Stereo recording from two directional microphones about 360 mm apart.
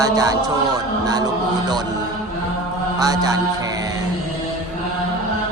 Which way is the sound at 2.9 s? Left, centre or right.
Centre.